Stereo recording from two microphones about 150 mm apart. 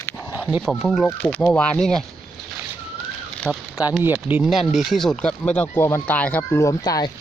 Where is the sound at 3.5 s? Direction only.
5° left (ahead or behind).